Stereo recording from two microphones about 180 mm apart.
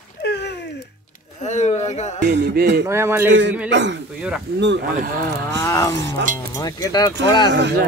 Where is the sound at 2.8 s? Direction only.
15° right (ahead or behind).